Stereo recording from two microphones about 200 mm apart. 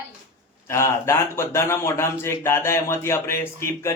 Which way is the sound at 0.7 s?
15° left (ahead or behind).